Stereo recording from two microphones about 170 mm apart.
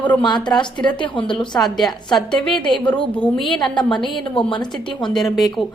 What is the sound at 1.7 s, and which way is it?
A woman's voice, centre (ahead or behind).